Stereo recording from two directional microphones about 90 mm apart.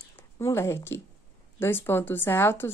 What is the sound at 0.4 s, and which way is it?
A woman's voice, 35° left (ahead or behind).